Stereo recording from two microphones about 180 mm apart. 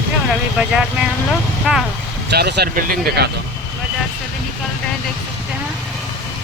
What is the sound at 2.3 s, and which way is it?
Speech, 65° right (ahead or behind).